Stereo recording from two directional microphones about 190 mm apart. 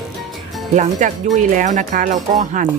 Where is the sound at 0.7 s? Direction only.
40° right (ahead or behind).